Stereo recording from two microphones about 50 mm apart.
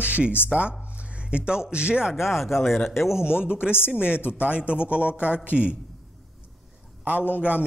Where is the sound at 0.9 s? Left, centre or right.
Right.